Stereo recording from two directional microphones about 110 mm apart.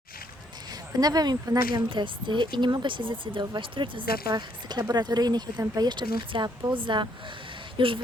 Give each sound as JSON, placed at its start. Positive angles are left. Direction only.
{"t": 0.7, "sound": "speech", "side_deg": -35}